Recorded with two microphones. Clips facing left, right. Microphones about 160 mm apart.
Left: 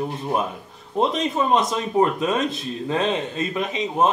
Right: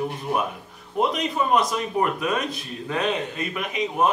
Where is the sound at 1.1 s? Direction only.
25° left (ahead or behind).